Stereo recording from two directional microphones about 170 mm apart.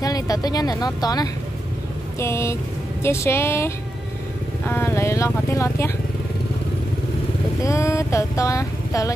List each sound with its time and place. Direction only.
0.0 s vehicle: 20° left (ahead or behind)
2.1 s speech: 15° left (ahead or behind)
7.6 s vehicle: 15° left (ahead or behind)